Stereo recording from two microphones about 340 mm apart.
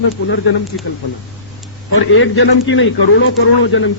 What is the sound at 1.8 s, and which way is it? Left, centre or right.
A man's voice, left.